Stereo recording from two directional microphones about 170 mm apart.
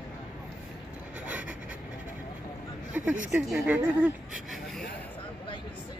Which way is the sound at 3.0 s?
10° right (ahead or behind).